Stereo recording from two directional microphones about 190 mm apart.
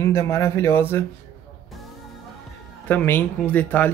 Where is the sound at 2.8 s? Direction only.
10° left (ahead or behind).